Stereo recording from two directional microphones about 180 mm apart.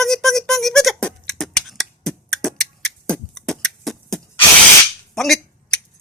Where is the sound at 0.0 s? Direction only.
Centre (ahead or behind).